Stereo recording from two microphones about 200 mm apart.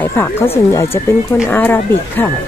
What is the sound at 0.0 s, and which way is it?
Speech, 10° left (ahead or behind).